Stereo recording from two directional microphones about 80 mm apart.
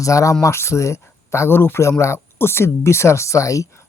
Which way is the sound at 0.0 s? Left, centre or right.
Left.